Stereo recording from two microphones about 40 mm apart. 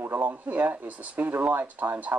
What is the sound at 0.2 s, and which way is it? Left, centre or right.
Speech, right.